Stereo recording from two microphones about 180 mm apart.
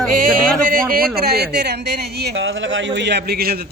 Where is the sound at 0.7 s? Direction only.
55° right (ahead or behind).